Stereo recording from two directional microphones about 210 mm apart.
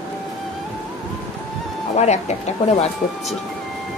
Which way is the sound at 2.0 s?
30° left (ahead or behind).